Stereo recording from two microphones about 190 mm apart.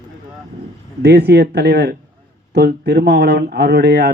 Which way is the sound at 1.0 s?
60° right (ahead or behind).